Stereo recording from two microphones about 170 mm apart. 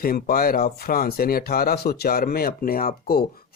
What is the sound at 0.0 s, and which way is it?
Speech, 60° left (ahead or behind).